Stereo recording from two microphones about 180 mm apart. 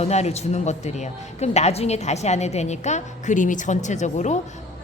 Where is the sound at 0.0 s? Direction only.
35° left (ahead or behind).